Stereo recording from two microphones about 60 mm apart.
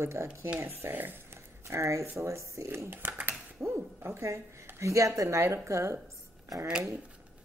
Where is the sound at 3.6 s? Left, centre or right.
Right.